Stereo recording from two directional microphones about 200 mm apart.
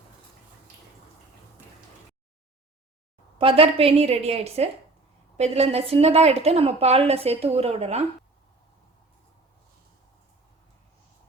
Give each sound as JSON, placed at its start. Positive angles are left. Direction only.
{"t": 3.3, "sound": "a woman's voice", "side_deg": -25}